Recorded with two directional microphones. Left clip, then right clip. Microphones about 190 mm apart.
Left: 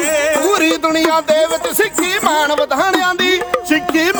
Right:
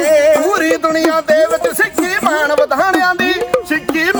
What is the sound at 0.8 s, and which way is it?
Music, 60° left (ahead or behind).